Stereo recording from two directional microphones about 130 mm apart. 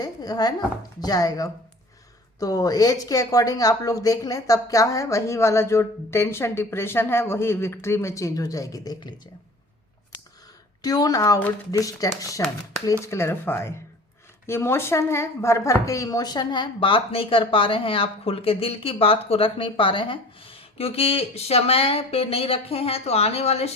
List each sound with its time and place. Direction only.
0.0 s a woman's voice: 30° left (ahead or behind)
10.8 s a woman's voice: 30° left (ahead or behind); by 23.6 s 50° left (ahead or behind)